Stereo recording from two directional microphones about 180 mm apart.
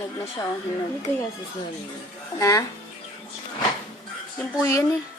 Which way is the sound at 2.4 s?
20° left (ahead or behind).